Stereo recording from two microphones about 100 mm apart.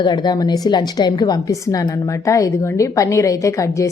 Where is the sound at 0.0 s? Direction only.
45° left (ahead or behind).